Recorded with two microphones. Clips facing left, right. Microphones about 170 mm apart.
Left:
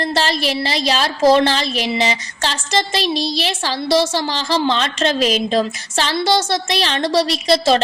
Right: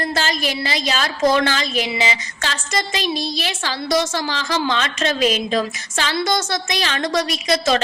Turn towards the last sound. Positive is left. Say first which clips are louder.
# left 4 dB
turn(degrees=30)  # may be behind; listen again after turning